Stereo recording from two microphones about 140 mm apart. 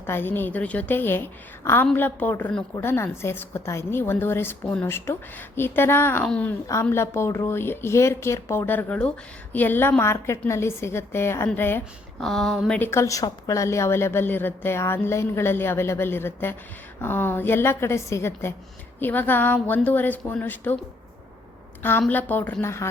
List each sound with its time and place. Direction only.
0.0 s a woman's voice: 15° left (ahead or behind)
12.2 s a woman's voice: centre (ahead or behind)
21.8 s a woman's voice: 15° left (ahead or behind)